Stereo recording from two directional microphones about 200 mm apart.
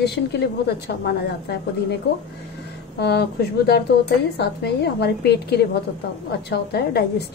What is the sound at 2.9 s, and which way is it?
Speech, 55° left (ahead or behind).